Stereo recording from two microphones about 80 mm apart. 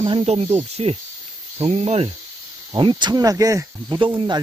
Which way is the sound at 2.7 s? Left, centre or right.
Right.